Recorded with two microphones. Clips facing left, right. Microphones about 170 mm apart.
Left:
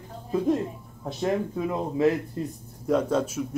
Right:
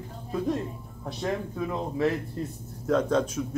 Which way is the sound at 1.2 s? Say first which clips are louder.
Left 4 dB; 20° left (ahead or behind).